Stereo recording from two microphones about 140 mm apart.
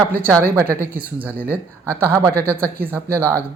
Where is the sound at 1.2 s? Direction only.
10° right (ahead or behind).